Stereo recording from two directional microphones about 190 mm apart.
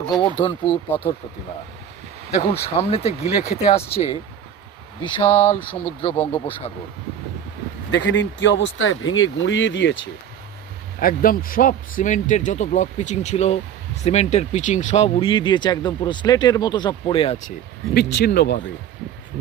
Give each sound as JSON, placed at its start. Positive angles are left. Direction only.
{"t": 0.1, "sound": "speech", "side_deg": 25}
{"t": 2.5, "sound": "a man's voice", "side_deg": 30}
{"t": 7.9, "sound": "speech", "side_deg": 70}
{"t": 11.0, "sound": "a man's voice", "side_deg": 50}
{"t": 17.9, "sound": "speech", "side_deg": 60}